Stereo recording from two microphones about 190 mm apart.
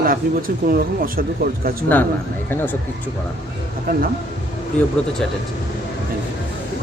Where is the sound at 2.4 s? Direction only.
10° left (ahead or behind).